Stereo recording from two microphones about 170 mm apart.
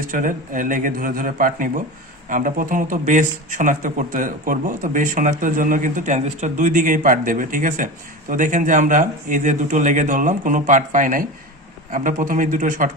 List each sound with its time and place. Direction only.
0.1 s speech: 50° right (ahead or behind)